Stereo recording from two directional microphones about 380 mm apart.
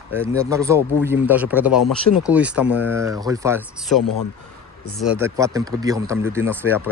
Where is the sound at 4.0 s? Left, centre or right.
Left.